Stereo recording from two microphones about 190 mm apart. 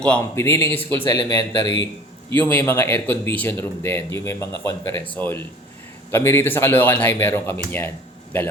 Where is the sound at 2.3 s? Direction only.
10° left (ahead or behind).